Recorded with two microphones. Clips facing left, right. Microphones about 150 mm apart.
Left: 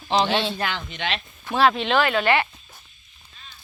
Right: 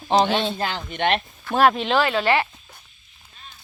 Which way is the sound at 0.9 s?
55° right (ahead or behind).